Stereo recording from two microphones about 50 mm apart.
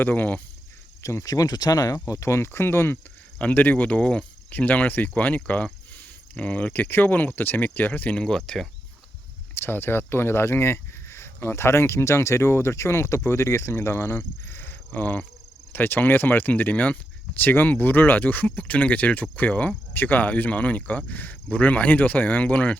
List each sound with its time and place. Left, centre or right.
0.0 s speech: left
1.0 s speech: left
3.3 s speech: left
8.1 s speech: centre
9.6 s speech: left
19.9 s speech: left